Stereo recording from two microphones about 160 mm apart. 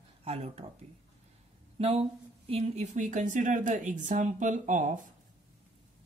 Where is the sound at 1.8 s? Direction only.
35° right (ahead or behind).